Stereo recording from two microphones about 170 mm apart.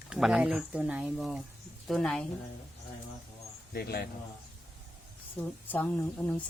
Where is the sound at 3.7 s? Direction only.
65° left (ahead or behind).